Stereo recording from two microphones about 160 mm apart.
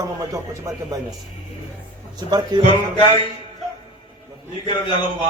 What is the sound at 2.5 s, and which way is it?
Speech, 30° right (ahead or behind).